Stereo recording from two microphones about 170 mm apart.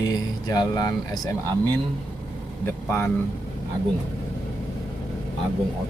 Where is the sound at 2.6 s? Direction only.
15° left (ahead or behind).